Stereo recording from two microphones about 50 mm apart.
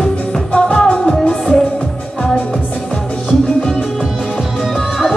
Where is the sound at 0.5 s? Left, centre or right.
Centre.